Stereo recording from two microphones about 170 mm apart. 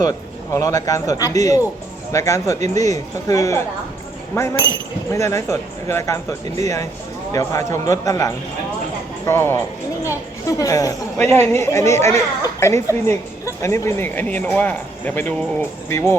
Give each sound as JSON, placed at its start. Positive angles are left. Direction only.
{"t": 0.0, "sound": "speech", "side_deg": 20}
{"t": 10.6, "sound": "speech", "side_deg": 20}